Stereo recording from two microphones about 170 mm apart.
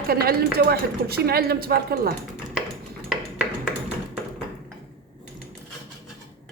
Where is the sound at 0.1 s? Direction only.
60° right (ahead or behind).